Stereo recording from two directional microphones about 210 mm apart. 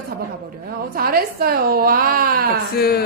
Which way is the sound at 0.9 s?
45° right (ahead or behind).